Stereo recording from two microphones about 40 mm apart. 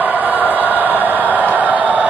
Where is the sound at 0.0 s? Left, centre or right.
Right.